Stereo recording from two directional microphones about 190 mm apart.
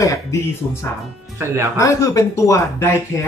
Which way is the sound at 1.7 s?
15° left (ahead or behind).